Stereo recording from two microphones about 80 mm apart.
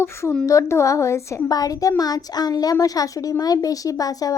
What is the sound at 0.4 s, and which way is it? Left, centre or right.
Speech, left.